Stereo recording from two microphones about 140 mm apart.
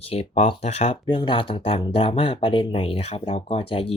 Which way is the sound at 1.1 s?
35° left (ahead or behind).